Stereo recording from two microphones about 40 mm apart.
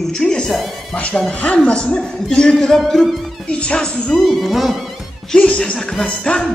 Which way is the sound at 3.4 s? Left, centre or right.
Left.